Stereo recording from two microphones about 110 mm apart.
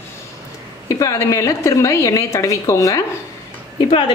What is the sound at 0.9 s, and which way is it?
A woman's voice, 30° left (ahead or behind).